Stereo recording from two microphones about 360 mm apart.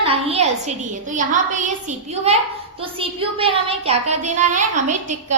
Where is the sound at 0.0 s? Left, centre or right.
Centre.